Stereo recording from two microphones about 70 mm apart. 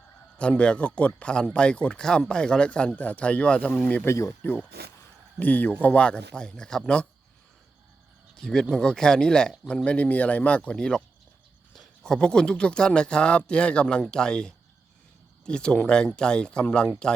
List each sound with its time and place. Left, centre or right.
0.3 s speech: centre
4.0 s speech: left
5.4 s speech: left
8.4 s speech: centre